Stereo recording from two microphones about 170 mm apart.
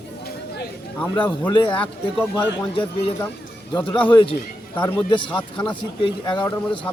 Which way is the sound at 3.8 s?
10° left (ahead or behind).